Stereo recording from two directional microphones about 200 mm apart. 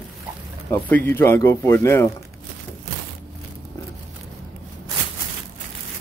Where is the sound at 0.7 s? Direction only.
10° left (ahead or behind).